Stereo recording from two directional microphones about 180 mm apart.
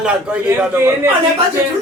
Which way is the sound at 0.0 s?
5° right (ahead or behind).